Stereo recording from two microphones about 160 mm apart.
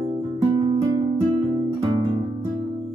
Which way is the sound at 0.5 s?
25° right (ahead or behind).